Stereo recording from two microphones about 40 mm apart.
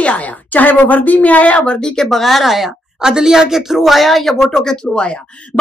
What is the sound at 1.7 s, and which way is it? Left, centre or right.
Speech, centre.